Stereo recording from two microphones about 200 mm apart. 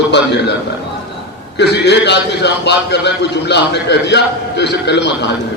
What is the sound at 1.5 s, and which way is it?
A man's voice, 55° left (ahead or behind).